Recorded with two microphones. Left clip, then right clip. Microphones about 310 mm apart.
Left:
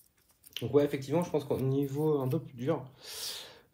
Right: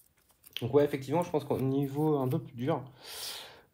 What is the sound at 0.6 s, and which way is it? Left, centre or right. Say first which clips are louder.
Speech: right 1 dB; right.